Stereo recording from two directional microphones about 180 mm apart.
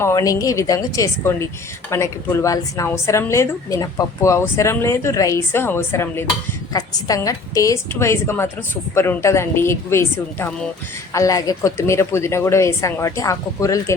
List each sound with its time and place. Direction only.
0.0 s a woman's voice: 20° left (ahead or behind)